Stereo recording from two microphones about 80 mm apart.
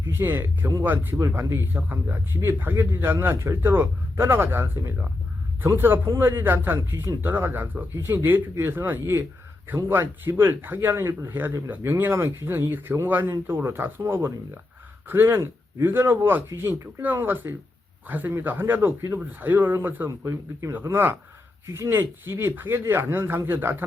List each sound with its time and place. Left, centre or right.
0.1 s speech: right
20.1 s a man's voice: right